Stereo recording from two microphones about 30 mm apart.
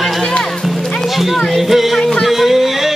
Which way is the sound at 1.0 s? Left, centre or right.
Centre.